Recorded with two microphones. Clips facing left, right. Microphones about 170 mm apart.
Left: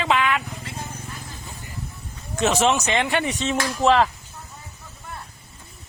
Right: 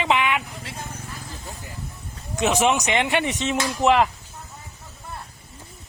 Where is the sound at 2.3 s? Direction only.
15° right (ahead or behind).